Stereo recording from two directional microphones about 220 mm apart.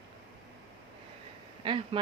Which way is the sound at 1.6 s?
25° right (ahead or behind).